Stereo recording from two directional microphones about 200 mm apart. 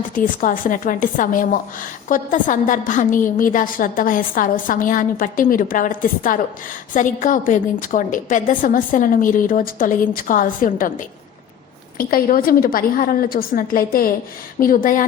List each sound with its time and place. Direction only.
0.1 s a woman's voice: 40° left (ahead or behind)